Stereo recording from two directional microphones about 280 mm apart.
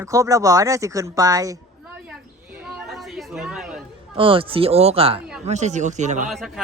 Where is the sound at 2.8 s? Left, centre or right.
Centre.